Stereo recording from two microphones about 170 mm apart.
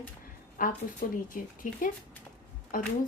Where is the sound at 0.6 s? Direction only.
55° left (ahead or behind).